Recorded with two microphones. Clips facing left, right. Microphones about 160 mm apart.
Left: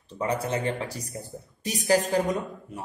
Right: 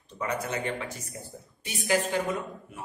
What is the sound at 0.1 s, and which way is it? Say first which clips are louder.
Speech: left 4 dB; 30° left (ahead or behind).